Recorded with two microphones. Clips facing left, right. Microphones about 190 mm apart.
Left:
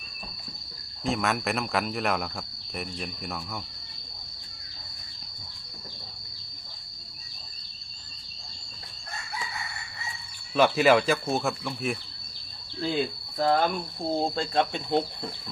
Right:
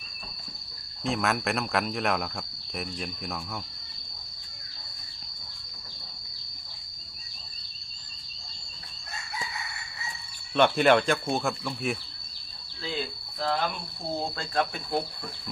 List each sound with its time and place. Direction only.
1.0 s speech: centre (ahead or behind)
10.5 s speech: 5° left (ahead or behind)
13.4 s speech: 45° left (ahead or behind)
14.1 s speech: 30° left (ahead or behind)